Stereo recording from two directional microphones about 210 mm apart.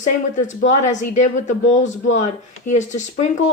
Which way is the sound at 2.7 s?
35° left (ahead or behind).